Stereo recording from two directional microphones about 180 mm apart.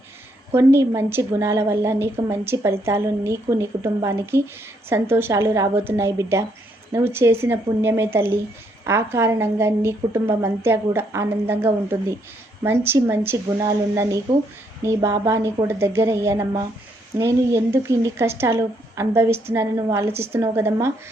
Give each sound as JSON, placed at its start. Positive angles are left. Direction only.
{"t": 0.5, "sound": "speech", "side_deg": -15}